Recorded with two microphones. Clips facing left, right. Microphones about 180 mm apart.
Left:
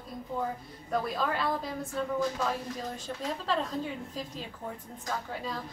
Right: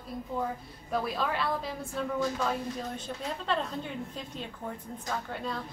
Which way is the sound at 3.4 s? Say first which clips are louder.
Left 1 dB; centre (ahead or behind).